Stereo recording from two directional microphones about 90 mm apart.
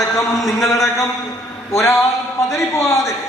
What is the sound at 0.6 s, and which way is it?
Speech, 35° left (ahead or behind).